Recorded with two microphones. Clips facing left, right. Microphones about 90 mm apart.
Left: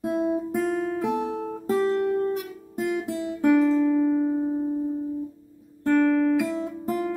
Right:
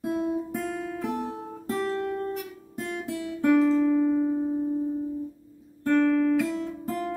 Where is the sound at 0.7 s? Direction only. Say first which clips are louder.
Left 6 dB; 45° left (ahead or behind).